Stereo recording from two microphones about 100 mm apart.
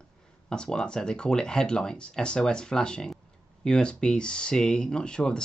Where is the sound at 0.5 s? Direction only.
5° left (ahead or behind).